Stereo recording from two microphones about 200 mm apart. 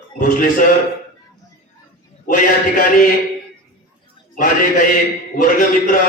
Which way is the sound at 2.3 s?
45° left (ahead or behind).